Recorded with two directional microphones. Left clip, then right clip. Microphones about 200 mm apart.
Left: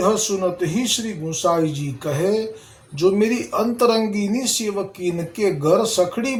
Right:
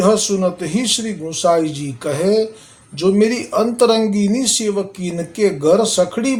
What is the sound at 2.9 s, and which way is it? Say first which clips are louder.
Speech: right 3 dB; 25° right (ahead or behind).